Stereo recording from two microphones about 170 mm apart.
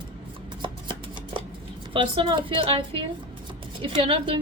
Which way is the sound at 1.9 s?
30° right (ahead or behind).